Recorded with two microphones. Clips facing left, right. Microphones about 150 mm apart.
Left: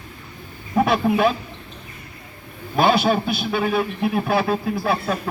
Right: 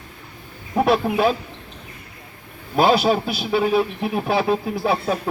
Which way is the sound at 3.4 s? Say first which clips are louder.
Right 3 dB; 10° right (ahead or behind).